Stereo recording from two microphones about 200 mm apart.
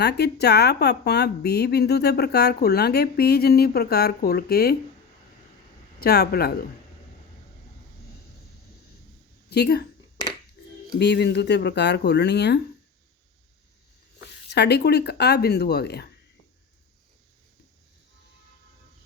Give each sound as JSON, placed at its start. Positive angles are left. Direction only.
{"t": 0.0, "sound": "speech", "side_deg": 55}
{"t": 6.0, "sound": "speech", "side_deg": 50}
{"t": 9.5, "sound": "speech", "side_deg": 55}
{"t": 10.9, "sound": "speech", "side_deg": 55}
{"t": 14.5, "sound": "speech", "side_deg": 55}